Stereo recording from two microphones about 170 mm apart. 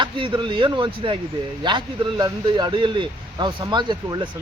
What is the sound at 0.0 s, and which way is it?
Speech, 30° right (ahead or behind).